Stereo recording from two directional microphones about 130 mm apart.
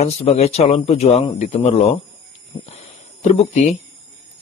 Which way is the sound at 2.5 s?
30° left (ahead or behind).